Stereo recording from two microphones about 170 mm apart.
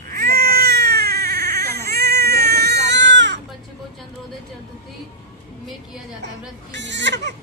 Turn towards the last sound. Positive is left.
turn(degrees=-90)